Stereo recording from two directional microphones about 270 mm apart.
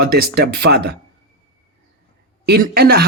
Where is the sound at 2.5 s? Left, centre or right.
Right.